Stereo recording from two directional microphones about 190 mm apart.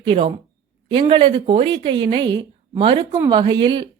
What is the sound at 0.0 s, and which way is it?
Speech, 30° right (ahead or behind).